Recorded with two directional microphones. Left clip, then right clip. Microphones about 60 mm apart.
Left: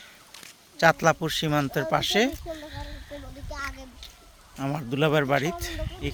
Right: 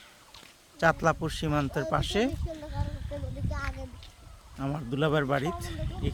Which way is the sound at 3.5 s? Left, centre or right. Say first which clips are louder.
Left 4 dB; centre.